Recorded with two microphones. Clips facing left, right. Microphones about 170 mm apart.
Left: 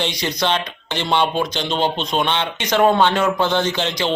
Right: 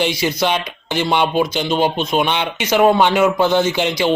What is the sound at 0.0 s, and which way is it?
Speech, 5° right (ahead or behind).